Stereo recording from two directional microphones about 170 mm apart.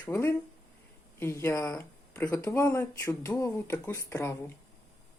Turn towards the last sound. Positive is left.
turn(degrees=15)  # may be behind; listen again after turning